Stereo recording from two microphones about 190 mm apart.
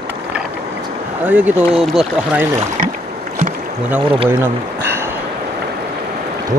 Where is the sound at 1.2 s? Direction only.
10° right (ahead or behind).